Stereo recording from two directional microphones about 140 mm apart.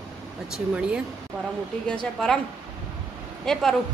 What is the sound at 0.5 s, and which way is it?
Speech, 5° right (ahead or behind).